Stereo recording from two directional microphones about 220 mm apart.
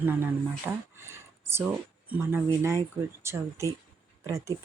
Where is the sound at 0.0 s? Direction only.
10° right (ahead or behind).